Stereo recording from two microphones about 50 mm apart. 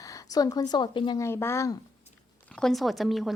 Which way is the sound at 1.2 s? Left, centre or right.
Left.